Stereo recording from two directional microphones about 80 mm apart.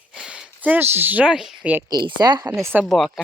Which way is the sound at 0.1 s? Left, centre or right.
Centre.